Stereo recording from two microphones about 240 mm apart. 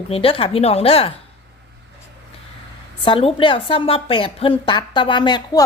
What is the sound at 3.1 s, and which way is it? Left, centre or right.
A woman's voice, left.